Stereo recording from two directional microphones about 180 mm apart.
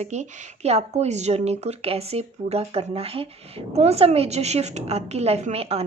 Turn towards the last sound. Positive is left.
turn(degrees=-35)  # may be behind; listen again after turning